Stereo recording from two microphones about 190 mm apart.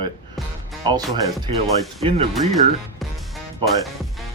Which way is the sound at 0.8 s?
20° right (ahead or behind).